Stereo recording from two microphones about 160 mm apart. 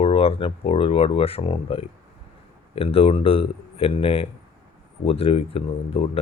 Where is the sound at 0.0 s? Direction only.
35° left (ahead or behind).